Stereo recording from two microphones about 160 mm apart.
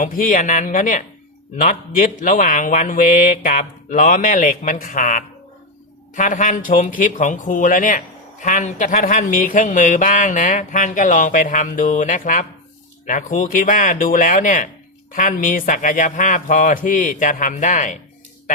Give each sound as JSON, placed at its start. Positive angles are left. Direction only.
{"t": 0.0, "sound": "speech", "side_deg": 60}